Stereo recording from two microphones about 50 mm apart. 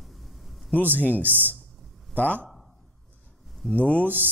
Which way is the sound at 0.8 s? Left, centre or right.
Right.